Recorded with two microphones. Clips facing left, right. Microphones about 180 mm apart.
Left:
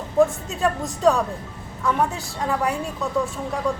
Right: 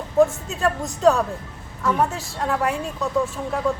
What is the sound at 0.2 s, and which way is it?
A woman's voice, centre (ahead or behind).